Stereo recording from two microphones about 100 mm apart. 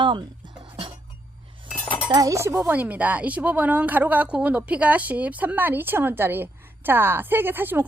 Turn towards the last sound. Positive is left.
turn(degrees=-20)  # may be behind; listen again after turning